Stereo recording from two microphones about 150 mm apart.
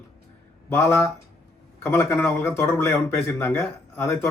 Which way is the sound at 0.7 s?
15° left (ahead or behind).